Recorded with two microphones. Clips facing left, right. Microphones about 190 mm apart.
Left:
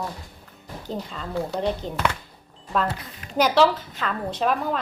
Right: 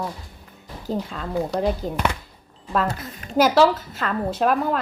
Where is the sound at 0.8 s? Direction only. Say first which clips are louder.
Right 5 dB; 5° right (ahead or behind).